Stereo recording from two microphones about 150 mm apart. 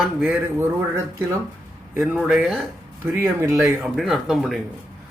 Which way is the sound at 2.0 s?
5° right (ahead or behind).